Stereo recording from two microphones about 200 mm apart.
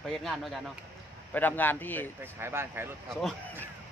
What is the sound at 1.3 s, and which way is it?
Speech, 10° left (ahead or behind).